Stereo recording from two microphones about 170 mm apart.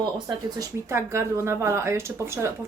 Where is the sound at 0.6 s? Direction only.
15° right (ahead or behind).